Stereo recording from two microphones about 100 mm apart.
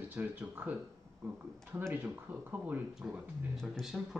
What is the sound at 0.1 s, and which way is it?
Speech, 15° right (ahead or behind).